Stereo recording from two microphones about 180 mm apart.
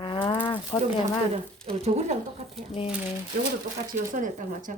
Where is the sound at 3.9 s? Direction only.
45° right (ahead or behind).